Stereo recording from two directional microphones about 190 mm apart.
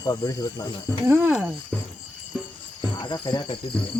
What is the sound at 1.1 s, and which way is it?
Speech, 10° right (ahead or behind).